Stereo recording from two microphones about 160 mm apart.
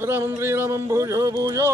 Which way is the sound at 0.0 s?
15° right (ahead or behind).